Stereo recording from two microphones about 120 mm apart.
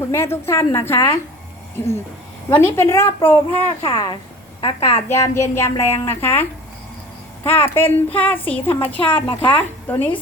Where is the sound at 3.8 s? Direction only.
40° left (ahead or behind).